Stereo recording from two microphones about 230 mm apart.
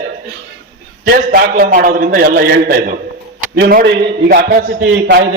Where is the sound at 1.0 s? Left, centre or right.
Right.